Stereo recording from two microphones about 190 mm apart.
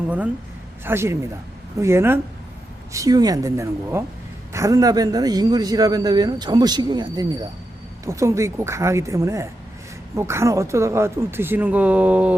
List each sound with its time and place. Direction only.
0.9 s a man's voice: 15° right (ahead or behind)